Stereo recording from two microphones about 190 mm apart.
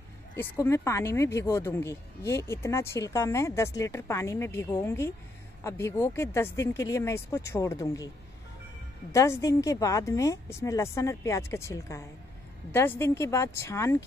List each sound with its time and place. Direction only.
0.4 s speech: 15° left (ahead or behind)
9.1 s speech: 15° left (ahead or behind)